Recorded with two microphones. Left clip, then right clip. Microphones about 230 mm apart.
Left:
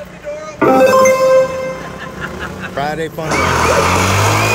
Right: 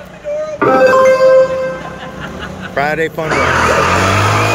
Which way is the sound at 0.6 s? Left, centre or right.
Left.